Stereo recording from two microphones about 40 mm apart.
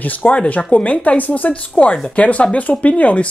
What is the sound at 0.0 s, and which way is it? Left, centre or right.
Speech, left.